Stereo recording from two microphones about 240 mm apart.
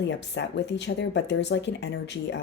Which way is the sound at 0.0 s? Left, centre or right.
Left.